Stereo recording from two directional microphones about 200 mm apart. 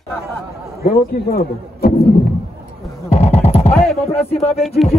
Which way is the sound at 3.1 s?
30° left (ahead or behind).